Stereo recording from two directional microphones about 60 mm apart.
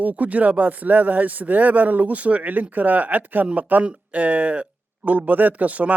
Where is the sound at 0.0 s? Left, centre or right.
Right.